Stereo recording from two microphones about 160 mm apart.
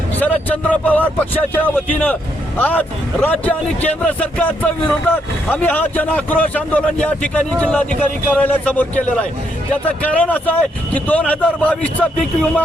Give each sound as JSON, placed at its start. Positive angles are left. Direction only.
{"t": 0.2, "sound": "a man's voice", "side_deg": 10}
{"t": 10.2, "sound": "a man's voice", "side_deg": 10}